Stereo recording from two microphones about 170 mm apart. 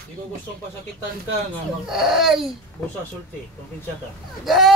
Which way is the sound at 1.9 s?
Centre (ahead or behind).